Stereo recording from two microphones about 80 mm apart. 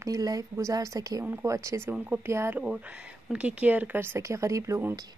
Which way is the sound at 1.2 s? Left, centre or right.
Right.